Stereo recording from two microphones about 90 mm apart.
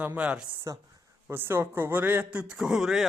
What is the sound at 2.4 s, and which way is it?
Speech, 10° right (ahead or behind).